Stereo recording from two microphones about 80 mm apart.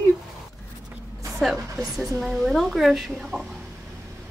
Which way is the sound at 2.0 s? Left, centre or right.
Centre.